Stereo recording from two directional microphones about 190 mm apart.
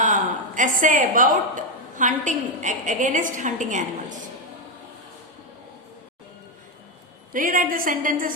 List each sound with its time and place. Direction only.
0.0 s a woman's voice: 40° right (ahead or behind)
7.3 s a woman's voice: 45° right (ahead or behind)